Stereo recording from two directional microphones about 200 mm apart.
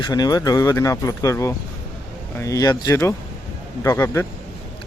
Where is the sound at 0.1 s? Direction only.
20° left (ahead or behind).